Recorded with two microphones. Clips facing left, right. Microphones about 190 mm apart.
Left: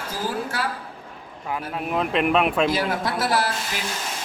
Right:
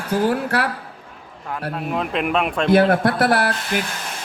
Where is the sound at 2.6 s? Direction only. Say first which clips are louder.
Right 8 dB; 60° right (ahead or behind).